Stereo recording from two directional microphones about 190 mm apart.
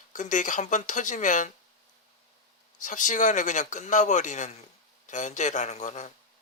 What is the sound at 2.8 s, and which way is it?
A man's voice, 40° left (ahead or behind).